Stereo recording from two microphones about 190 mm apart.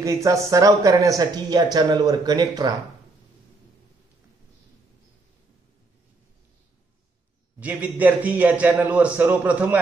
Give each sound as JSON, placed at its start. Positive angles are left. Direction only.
{"t": 0.0, "sound": "speech", "side_deg": -15}
{"t": 7.6, "sound": "a man's voice", "side_deg": -10}